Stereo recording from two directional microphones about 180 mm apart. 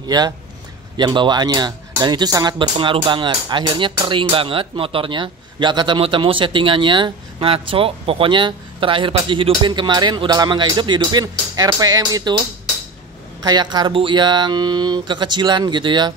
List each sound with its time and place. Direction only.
0.0 s a man's voice: 25° right (ahead or behind)
13.4 s speech: 25° right (ahead or behind)